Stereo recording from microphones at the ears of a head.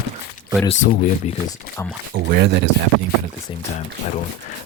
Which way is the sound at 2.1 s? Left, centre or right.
Right.